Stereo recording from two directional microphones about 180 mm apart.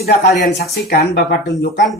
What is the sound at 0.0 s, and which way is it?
Speech, 70° left (ahead or behind).